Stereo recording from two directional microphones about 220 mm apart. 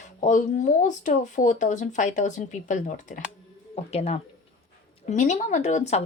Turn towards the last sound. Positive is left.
turn(degrees=30)  # may be behind; listen again after turning